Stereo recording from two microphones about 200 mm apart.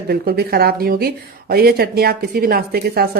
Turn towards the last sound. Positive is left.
turn(degrees=-50)  # may be behind; listen again after turning